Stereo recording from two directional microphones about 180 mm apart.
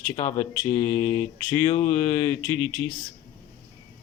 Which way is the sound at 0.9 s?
15° left (ahead or behind).